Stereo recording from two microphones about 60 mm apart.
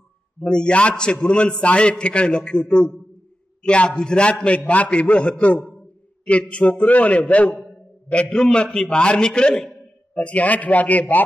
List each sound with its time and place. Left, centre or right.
0.4 s a man's voice: centre
8.1 s a man's voice: centre